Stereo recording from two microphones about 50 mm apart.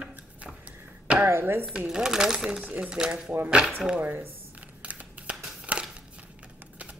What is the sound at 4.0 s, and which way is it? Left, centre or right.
Speech, right.